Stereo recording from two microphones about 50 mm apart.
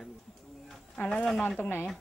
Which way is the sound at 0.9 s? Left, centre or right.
Left.